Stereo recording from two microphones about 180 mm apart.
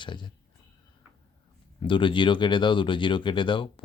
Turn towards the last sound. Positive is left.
turn(degrees=25)  # may be behind; listen again after turning